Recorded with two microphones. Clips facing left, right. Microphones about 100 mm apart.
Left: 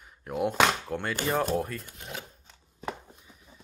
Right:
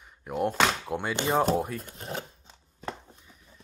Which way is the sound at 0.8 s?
15° right (ahead or behind).